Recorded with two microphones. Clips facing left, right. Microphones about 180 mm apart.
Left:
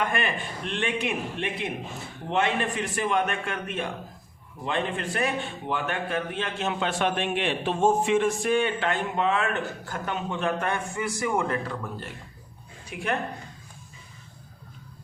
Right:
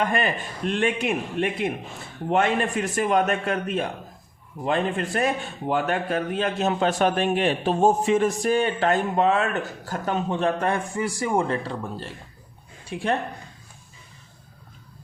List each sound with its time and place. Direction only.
0.0 s a man's voice: 35° right (ahead or behind)